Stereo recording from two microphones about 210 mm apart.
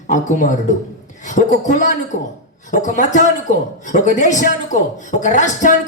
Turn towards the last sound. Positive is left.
turn(degrees=35)  # may be behind; listen again after turning